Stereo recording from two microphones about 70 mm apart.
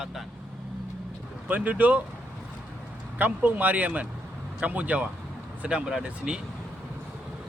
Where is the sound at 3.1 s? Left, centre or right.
Right.